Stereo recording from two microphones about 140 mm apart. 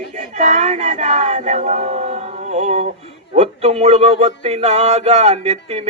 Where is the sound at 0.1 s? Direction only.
60° right (ahead or behind).